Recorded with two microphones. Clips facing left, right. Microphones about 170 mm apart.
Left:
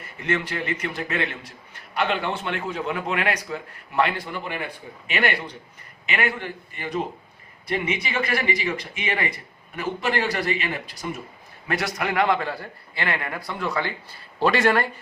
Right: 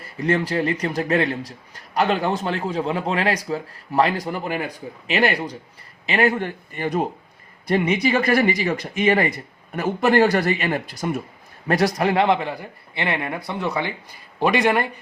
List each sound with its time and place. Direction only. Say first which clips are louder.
0.2 s a man's voice: right 6 dB; 35° right (ahead or behind)
11.7 s a man's voice: right 7 dB; 35° right (ahead or behind); by 14.8 s 20° right (ahead or behind)